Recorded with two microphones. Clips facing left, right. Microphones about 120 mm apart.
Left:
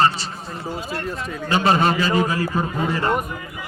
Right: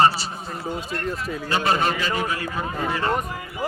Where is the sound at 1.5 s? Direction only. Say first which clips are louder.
Left 4 dB; 25° left (ahead or behind).